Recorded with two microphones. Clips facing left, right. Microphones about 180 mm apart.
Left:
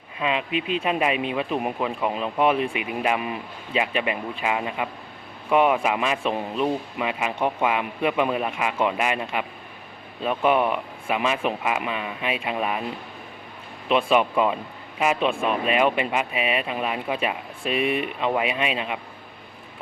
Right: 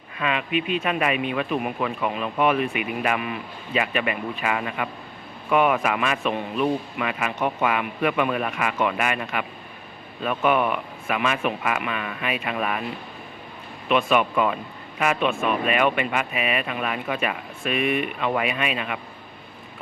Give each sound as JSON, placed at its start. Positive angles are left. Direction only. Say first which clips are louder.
{"t": 0.2, "sound": "speech", "louder": "even", "side_deg": 25}
{"t": 5.5, "sound": "a man's voice", "louder": "left 1 dB", "side_deg": 25}
{"t": 13.8, "sound": "speech", "louder": "left 1 dB", "side_deg": 30}